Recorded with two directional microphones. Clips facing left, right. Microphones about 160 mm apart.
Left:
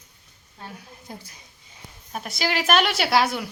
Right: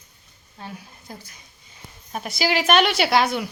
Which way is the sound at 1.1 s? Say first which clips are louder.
Even; 30° left (ahead or behind).